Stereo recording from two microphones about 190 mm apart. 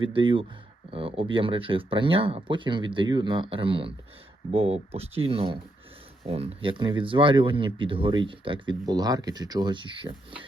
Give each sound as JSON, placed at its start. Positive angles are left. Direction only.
{"t": 0.0, "sound": "speech", "side_deg": -25}